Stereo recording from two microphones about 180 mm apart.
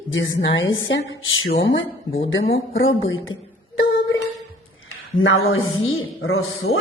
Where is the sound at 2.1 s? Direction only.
30° left (ahead or behind).